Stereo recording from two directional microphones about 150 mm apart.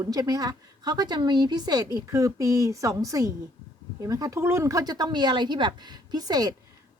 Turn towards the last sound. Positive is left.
turn(degrees=-25)  # may be behind; listen again after turning